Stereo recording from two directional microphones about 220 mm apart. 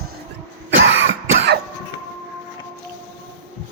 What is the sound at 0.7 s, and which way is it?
Cough, 55° right (ahead or behind).